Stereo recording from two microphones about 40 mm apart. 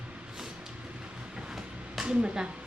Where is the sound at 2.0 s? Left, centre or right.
Right.